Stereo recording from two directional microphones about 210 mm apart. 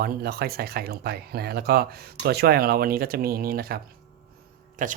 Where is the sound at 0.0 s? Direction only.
45° right (ahead or behind).